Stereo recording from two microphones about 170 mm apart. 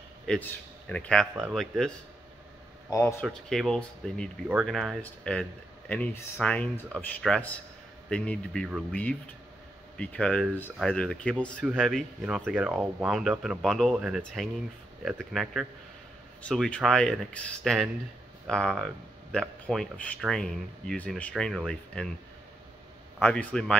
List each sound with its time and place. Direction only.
0.3 s a man's voice: 5° left (ahead or behind)
2.9 s speech: 15° left (ahead or behind)
3.2 s speech: centre (ahead or behind)
9.9 s speech: 5° left (ahead or behind)
11.6 s speech: 5° right (ahead or behind)
23.1 s speech: 5° left (ahead or behind)